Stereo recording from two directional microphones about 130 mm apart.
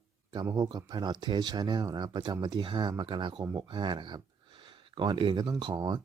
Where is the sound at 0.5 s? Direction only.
30° right (ahead or behind).